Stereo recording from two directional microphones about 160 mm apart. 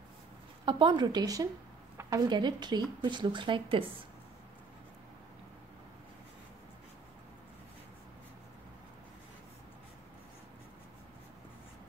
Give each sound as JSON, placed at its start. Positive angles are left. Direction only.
{"t": 0.7, "sound": "a woman's voice", "side_deg": -30}